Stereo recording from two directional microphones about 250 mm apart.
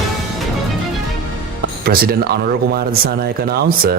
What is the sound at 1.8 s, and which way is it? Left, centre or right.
Speech, right.